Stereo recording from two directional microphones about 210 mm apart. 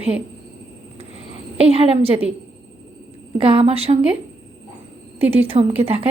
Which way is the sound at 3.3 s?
25° right (ahead or behind).